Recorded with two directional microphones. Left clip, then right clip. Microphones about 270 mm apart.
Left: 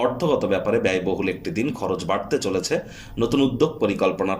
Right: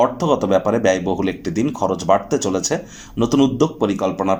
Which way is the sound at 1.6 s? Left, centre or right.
Centre.